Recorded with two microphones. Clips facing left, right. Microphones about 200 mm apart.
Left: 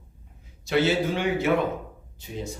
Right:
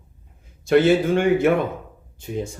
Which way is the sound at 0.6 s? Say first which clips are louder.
Right 7 dB; 50° right (ahead or behind).